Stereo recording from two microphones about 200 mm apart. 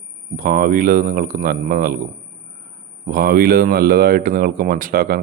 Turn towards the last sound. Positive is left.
turn(degrees=-45)  # may be behind; listen again after turning